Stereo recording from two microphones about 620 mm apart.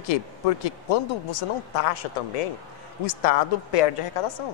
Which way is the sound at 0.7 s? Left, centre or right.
Left.